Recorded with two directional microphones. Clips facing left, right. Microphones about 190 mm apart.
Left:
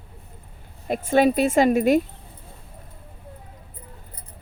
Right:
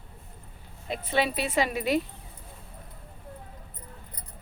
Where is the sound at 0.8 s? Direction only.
50° left (ahead or behind).